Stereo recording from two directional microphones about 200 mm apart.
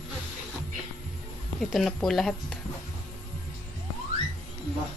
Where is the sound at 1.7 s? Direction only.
Centre (ahead or behind).